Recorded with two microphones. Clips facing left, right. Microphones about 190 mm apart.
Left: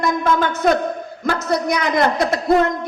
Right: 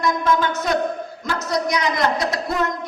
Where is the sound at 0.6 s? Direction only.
55° left (ahead or behind).